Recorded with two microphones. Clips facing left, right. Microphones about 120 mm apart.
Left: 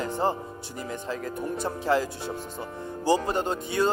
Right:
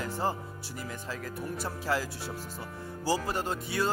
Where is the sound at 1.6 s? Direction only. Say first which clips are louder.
Left 7 dB; 25° left (ahead or behind).